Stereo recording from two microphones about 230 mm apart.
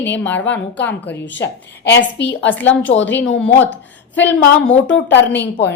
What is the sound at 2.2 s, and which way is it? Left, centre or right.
A woman's voice, left.